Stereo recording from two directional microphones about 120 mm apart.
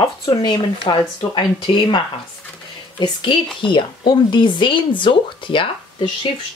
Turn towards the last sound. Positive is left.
turn(degrees=40)  # may be behind; listen again after turning